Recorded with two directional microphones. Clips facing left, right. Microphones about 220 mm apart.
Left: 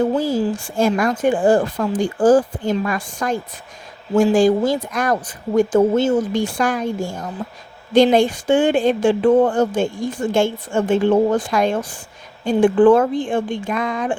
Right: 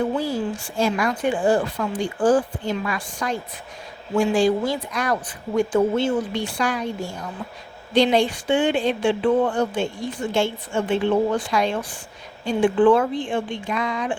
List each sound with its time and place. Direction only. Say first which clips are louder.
0.8 s speech: left 4 dB; 50° left (ahead or behind)